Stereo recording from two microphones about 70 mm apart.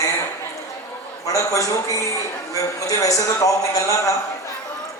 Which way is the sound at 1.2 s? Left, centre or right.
Left.